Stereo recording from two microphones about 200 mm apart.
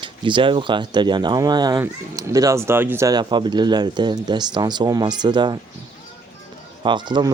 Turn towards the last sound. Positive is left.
turn(degrees=-20)  # may be behind; listen again after turning